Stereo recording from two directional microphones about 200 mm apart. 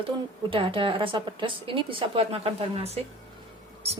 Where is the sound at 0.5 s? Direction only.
25° right (ahead or behind).